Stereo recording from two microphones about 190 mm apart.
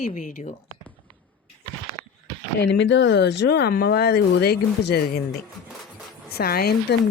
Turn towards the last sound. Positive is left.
turn(degrees=55)  # may be behind; listen again after turning